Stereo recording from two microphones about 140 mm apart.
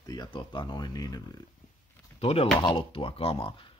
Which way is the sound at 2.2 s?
45° left (ahead or behind).